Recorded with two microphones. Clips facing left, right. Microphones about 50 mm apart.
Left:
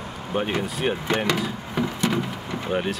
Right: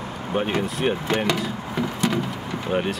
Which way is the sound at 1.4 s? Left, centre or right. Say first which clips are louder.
Even; centre.